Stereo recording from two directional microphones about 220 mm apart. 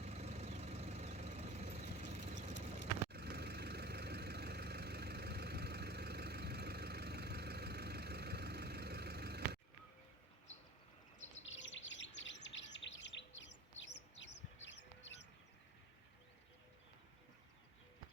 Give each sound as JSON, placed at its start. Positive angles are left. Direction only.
{"t": 0.0, "sound": "vehicle", "side_deg": -30}
{"t": 3.1, "sound": "vehicle", "side_deg": -45}
{"t": 11.4, "sound": "chirp", "side_deg": 60}
{"t": 14.2, "sound": "bird", "side_deg": 55}